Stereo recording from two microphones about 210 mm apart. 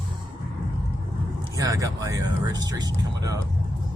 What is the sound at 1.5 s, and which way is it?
Speech, 15° right (ahead or behind).